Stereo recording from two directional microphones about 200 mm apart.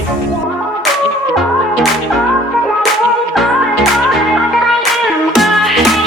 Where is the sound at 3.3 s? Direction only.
Centre (ahead or behind).